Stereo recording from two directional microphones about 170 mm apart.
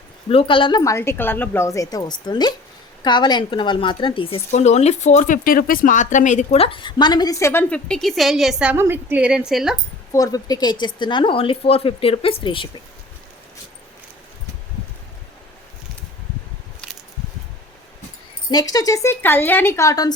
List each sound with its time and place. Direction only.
0.3 s speech: 35° left (ahead or behind); by 8.7 s centre (ahead or behind)
8.7 s a woman's voice: 15° right (ahead or behind)
10.1 s speech: 20° left (ahead or behind)
18.7 s speech: 20° left (ahead or behind)